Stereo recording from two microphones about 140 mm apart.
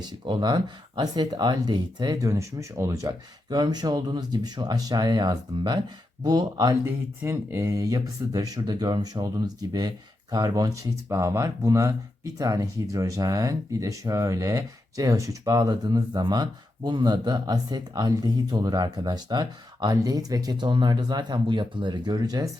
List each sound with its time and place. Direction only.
0.0 s speech: 30° right (ahead or behind)